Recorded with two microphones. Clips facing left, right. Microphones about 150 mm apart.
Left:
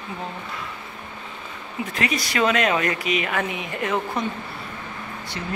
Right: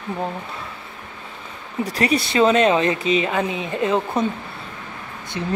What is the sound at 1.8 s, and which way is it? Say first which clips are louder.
Speech: right 6 dB; 35° right (ahead or behind).